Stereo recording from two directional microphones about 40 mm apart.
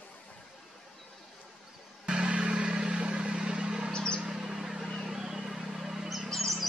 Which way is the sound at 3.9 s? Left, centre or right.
Centre.